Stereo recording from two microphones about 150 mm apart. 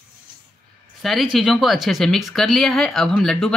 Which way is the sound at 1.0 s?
Centre (ahead or behind).